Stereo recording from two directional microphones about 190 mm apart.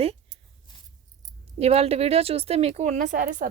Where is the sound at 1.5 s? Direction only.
35° right (ahead or behind).